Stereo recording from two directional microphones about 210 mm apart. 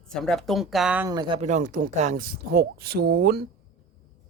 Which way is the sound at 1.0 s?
20° right (ahead or behind).